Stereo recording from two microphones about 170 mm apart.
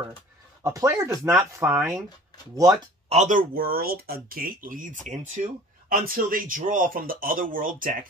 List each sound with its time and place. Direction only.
0.7 s speech: 20° right (ahead or behind)
3.1 s speech: 45° right (ahead or behind)